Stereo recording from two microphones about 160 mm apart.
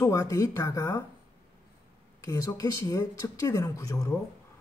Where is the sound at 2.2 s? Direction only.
20° left (ahead or behind).